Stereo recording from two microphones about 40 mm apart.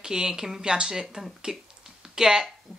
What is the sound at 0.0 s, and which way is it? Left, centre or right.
Speech, centre.